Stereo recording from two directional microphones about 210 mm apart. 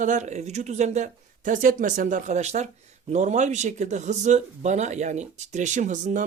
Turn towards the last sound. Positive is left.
turn(degrees=-35)  # may be behind; listen again after turning